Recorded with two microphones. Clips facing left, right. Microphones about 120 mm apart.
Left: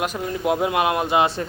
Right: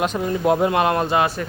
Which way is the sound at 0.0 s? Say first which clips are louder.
Right 4 dB; 5° left (ahead or behind).